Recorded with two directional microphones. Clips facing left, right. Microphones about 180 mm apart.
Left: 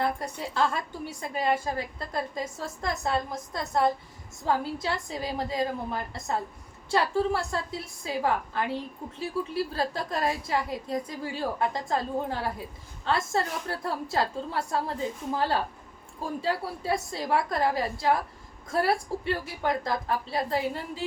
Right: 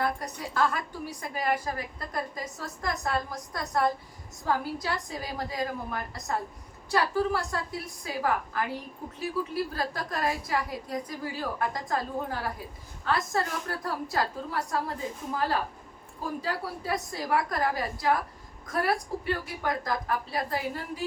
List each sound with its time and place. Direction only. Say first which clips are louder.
0.0 s a woman's voice: left 1 dB; 25° left (ahead or behind)